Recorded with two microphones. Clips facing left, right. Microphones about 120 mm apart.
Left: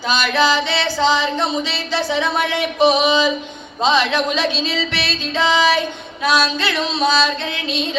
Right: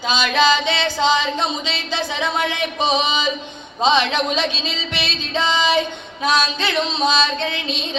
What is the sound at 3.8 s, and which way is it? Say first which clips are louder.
Speech: even; 20° right (ahead or behind).